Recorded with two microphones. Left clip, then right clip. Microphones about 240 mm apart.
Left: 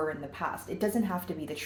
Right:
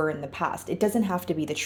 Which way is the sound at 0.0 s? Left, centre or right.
Right.